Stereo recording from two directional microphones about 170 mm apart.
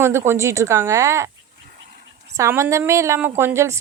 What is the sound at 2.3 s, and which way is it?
Speech, 15° right (ahead or behind).